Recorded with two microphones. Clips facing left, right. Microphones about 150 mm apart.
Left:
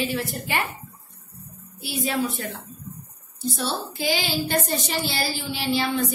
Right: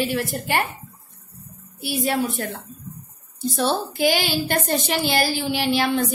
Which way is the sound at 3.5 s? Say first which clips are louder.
Right 9 dB; 65° right (ahead or behind).